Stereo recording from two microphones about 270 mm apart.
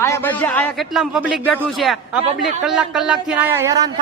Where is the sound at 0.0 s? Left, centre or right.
Centre.